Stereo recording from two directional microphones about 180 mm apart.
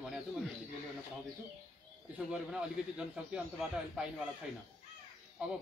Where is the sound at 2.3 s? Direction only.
5° right (ahead or behind).